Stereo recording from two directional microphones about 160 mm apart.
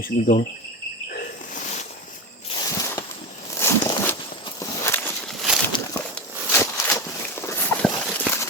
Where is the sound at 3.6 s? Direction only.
15° left (ahead or behind).